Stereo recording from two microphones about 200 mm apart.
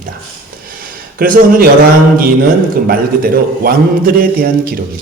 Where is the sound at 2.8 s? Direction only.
50° right (ahead or behind).